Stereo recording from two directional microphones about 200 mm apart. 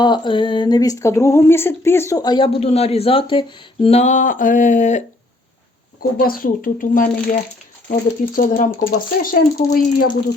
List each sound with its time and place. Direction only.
0.0 s speech: 25° left (ahead or behind)
3.8 s a sound: 35° left (ahead or behind)
6.0 s speech: 45° left (ahead or behind)